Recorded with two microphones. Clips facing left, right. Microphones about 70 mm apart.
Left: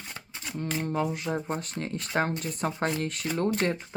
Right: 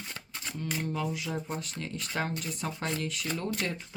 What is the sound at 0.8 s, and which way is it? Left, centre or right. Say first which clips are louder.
Speech: left 6 dB; left.